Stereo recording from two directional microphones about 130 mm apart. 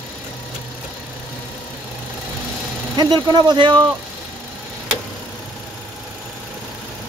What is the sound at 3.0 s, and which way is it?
Speech, 35° right (ahead or behind).